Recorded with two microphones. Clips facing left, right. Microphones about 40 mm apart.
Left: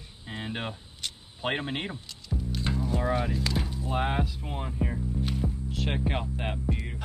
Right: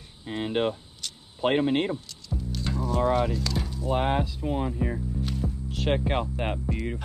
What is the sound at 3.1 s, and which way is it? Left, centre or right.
Speech, centre.